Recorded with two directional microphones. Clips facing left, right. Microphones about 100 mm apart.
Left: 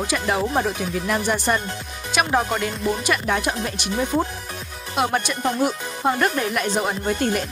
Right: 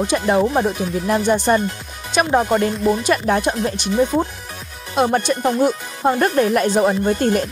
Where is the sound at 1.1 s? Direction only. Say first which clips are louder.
Right 6 dB; 30° right (ahead or behind).